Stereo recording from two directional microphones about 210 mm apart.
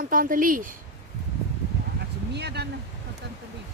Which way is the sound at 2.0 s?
50° right (ahead or behind).